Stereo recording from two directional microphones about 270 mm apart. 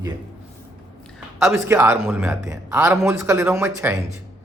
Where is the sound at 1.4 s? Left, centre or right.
Centre.